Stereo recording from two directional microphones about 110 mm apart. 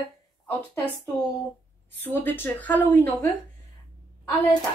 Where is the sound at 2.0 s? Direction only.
20° left (ahead or behind).